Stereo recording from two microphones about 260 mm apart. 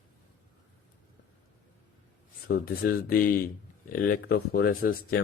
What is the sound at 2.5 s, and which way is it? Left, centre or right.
Speech, left.